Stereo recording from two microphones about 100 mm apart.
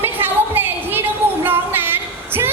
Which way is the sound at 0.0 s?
20° right (ahead or behind).